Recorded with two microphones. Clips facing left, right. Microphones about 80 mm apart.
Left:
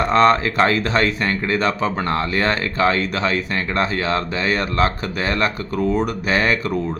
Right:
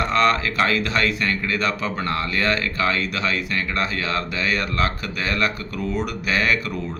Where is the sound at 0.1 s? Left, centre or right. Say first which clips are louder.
Left 7 dB; left.